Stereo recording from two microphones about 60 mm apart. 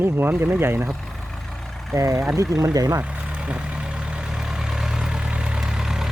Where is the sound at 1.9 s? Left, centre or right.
Right.